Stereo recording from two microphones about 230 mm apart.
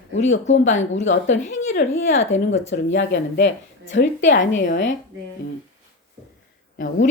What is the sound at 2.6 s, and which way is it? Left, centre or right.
Speech, left.